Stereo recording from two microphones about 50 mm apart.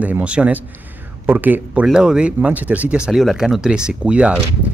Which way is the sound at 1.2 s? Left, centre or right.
Right.